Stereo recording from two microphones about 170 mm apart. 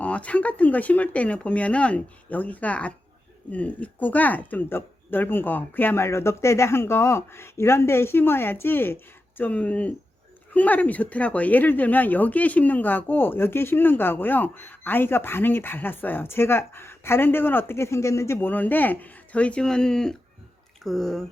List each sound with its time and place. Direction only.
0.0 s speech: 10° left (ahead or behind)